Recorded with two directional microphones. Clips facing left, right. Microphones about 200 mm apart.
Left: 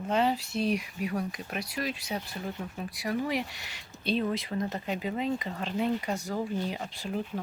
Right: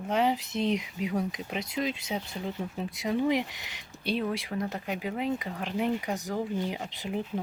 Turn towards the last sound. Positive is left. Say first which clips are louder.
# right 1 dB
turn(degrees=-20)  # may be behind; listen again after turning